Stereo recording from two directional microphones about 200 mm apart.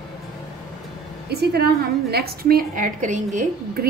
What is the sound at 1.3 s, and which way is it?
A woman's voice, 55° right (ahead or behind).